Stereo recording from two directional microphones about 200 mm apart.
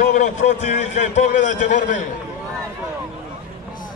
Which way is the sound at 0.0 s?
40° left (ahead or behind).